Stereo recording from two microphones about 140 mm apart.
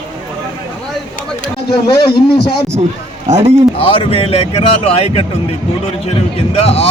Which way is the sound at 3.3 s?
50° right (ahead or behind).